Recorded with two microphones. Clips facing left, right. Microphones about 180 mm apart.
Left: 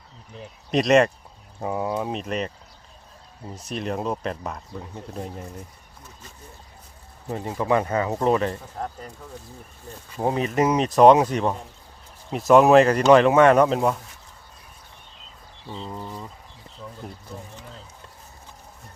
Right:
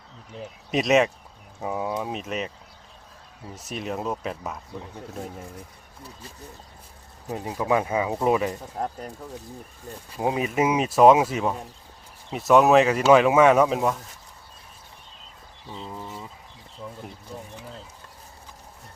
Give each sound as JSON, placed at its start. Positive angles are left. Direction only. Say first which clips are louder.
{"t": 0.7, "sound": "speech", "louder": "left 3 dB", "side_deg": 0}
{"t": 3.7, "sound": "speech", "louder": "left 2 dB", "side_deg": 0}
{"t": 7.3, "sound": "speech", "louder": "left 1 dB", "side_deg": -10}
{"t": 10.2, "sound": "speech", "louder": "left 2 dB", "side_deg": -10}
{"t": 15.9, "sound": "speech", "louder": "left 1 dB", "side_deg": 0}
{"t": 17.0, "sound": "speech", "louder": "left 2 dB", "side_deg": 35}